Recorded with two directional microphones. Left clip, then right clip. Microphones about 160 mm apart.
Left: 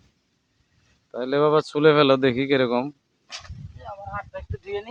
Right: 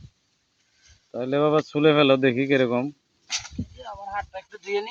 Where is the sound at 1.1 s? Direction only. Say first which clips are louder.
Left 2 dB; 15° left (ahead or behind).